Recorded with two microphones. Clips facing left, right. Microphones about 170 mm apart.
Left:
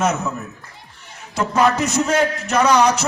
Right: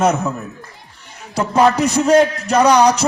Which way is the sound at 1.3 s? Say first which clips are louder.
Right 3 dB; 35° right (ahead or behind).